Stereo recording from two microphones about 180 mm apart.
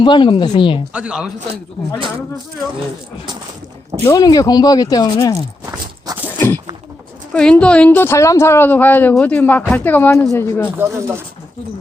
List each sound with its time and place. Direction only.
0.0 s speech: 25° left (ahead or behind)
0.9 s speech: 5° right (ahead or behind)
4.0 s speech: 20° left (ahead or behind)
5.6 s a sound: 15° right (ahead or behind)
6.2 s a sound: 10° left (ahead or behind)
7.3 s a woman's voice: 5° left (ahead or behind)
10.8 s speech: 15° right (ahead or behind)